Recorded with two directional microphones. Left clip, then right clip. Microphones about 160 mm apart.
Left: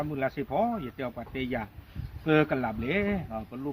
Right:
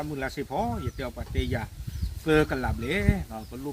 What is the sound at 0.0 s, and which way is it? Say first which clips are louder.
Speech: left 2 dB; 15° left (ahead or behind).